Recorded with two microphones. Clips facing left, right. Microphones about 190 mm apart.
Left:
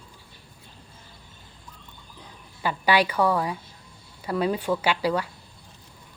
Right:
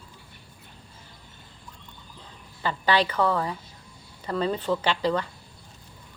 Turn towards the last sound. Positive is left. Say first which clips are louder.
# left 1 dB
turn(degrees=10)  # may be behind; listen again after turning